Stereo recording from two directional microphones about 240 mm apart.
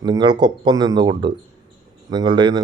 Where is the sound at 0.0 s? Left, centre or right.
Centre.